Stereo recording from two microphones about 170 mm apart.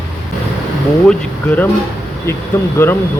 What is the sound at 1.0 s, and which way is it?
Speech, 10° left (ahead or behind).